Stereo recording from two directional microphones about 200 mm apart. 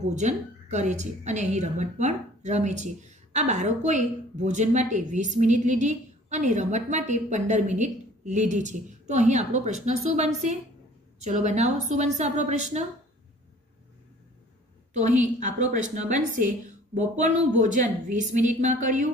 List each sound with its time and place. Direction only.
0.0 s a woman's voice: 35° right (ahead or behind)
15.0 s a woman's voice: 35° right (ahead or behind)